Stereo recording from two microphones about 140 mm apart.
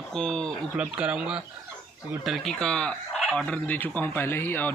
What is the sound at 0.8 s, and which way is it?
Speech, 10° right (ahead or behind).